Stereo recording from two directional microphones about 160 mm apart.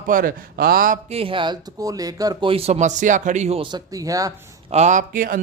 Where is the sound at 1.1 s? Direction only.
35° right (ahead or behind).